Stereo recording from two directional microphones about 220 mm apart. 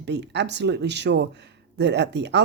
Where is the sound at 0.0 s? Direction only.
50° right (ahead or behind).